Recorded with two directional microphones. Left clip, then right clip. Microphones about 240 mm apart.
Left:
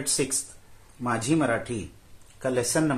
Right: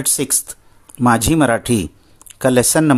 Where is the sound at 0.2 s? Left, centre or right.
Right.